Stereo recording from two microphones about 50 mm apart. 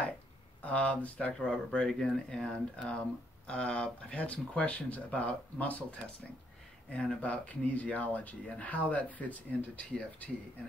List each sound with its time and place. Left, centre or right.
0.6 s speech: left
7.2 s speech: left